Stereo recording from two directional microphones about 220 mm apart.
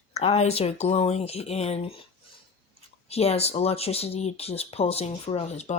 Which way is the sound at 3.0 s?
30° left (ahead or behind).